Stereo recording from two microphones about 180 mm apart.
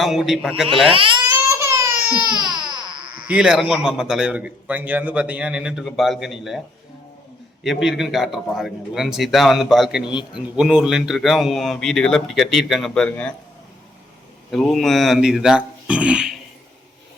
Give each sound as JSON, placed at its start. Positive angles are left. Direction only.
{"t": 0.0, "sound": "a man's voice", "side_deg": 0}
{"t": 0.9, "sound": "speech", "side_deg": -30}
{"t": 1.8, "sound": "baby cry", "side_deg": -15}
{"t": 2.4, "sound": "baby cry", "side_deg": -25}
{"t": 3.2, "sound": "a man's voice", "side_deg": -5}
{"t": 7.6, "sound": "a man's voice", "side_deg": 0}
{"t": 14.5, "sound": "a man's voice", "side_deg": 0}